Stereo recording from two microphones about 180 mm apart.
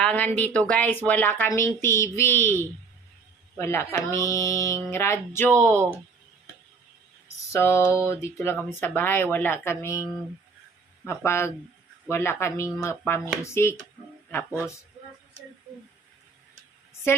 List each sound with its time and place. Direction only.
0.0 s speech: 5° left (ahead or behind)
5.5 s speech: 15° right (ahead or behind)
7.5 s speech: 15° left (ahead or behind)
17.1 s speech: 15° left (ahead or behind)